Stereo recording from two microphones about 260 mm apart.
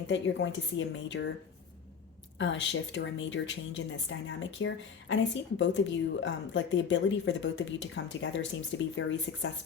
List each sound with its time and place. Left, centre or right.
0.1 s a woman's voice: left
2.4 s a woman's voice: left